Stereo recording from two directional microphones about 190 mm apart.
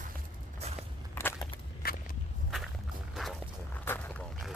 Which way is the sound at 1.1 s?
15° left (ahead or behind).